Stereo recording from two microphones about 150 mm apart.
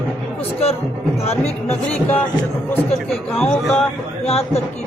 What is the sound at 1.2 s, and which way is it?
Speech, 45° left (ahead or behind).